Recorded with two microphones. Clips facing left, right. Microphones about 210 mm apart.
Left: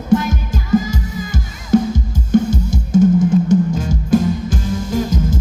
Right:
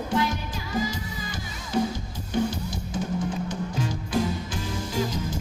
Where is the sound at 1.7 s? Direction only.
45° left (ahead or behind).